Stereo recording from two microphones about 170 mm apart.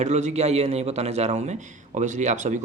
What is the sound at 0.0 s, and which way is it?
Speech, 45° right (ahead or behind).